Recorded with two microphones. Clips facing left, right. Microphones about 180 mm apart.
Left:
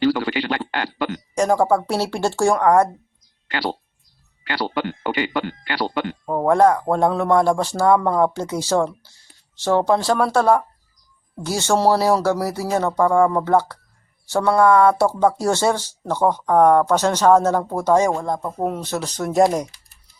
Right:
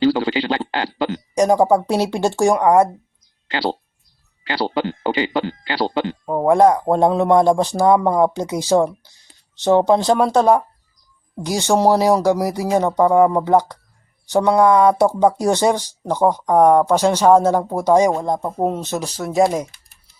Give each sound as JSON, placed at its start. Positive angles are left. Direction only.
{"t": 0.0, "sound": "speech", "side_deg": -25}
{"t": 3.5, "sound": "speech", "side_deg": -25}
{"t": 6.2, "sound": "speech", "side_deg": -10}